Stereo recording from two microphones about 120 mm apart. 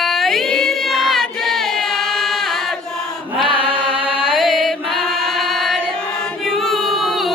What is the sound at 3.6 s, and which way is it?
Music, 45° right (ahead or behind).